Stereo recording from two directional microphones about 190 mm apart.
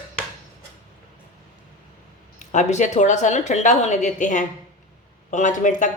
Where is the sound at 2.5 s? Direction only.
40° left (ahead or behind).